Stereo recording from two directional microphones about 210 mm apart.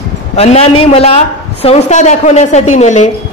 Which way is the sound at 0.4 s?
30° left (ahead or behind).